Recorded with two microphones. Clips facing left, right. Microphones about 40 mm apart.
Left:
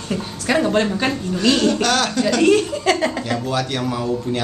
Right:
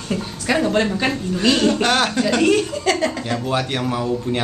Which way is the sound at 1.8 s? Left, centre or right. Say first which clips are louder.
Right 1 dB; right.